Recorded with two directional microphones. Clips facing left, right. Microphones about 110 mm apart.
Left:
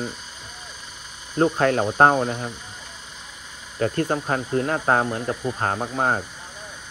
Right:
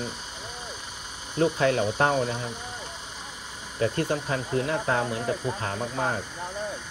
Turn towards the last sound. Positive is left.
turn(degrees=50)  # may be behind; listen again after turning